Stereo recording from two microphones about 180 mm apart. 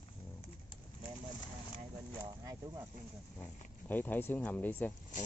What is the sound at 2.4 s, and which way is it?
Speech, 15° right (ahead or behind).